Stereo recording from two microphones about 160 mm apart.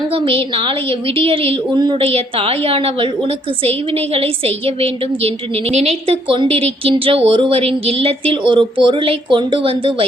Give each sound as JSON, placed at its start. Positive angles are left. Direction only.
{"t": 0.1, "sound": "a woman's voice", "side_deg": -35}